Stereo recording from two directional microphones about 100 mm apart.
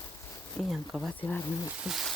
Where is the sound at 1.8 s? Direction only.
Centre (ahead or behind).